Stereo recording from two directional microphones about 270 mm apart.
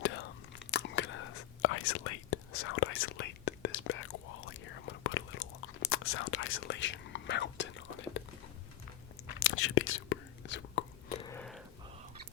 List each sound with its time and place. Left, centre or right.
0.0 s biting: left
0.7 s whispering: left
9.4 s whispering: left
11.3 s wheeze: centre